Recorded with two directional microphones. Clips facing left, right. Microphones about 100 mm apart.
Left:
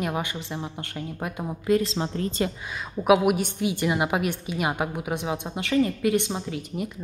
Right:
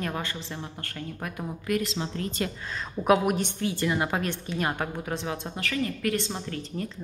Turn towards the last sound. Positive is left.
turn(degrees=10)  # may be behind; listen again after turning